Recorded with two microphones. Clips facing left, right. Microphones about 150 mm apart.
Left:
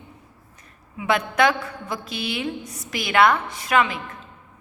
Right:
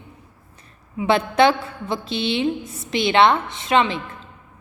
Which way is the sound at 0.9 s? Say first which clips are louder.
Right 4 dB; 30° right (ahead or behind).